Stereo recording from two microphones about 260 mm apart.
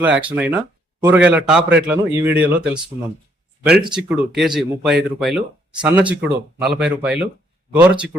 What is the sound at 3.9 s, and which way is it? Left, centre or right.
A man's voice, centre.